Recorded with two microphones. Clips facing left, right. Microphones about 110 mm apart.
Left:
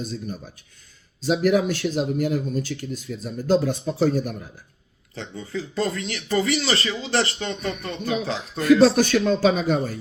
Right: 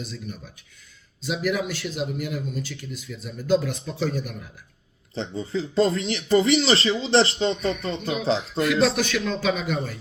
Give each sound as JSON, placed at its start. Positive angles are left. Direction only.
{"t": 0.0, "sound": "speech", "side_deg": 35}
{"t": 5.1, "sound": "speech", "side_deg": -25}
{"t": 8.6, "sound": "speech", "side_deg": 35}